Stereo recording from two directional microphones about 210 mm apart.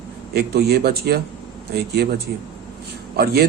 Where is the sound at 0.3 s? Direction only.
50° right (ahead or behind).